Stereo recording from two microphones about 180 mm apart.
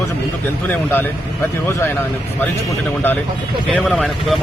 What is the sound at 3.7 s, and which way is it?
Speech, 5° left (ahead or behind).